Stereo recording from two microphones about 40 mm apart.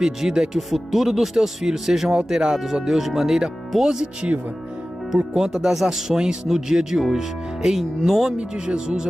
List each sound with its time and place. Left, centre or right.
0.0 s speech: centre
5.3 s speech: centre
8.6 s speech: centre